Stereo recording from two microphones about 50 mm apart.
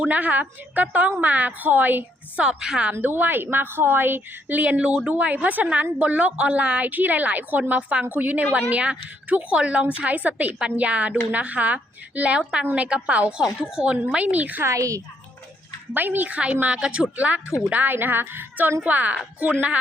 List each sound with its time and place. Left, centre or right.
0.1 s a woman's voice: right
2.4 s a woman's voice: centre
3.0 s a woman's voice: right
12.4 s a woman's voice: centre
13.4 s a woman's voice: centre; by 14.6 s right
14.6 s a woman's voice: right
16.0 s a woman's voice: right
16.4 s a woman's voice: right
17.2 s a woman's voice: right
17.9 s a woman's voice: right